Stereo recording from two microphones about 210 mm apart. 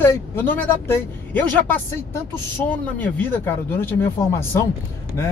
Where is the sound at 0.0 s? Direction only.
10° left (ahead or behind).